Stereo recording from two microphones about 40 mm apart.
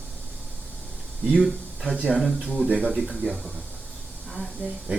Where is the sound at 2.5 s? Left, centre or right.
Left.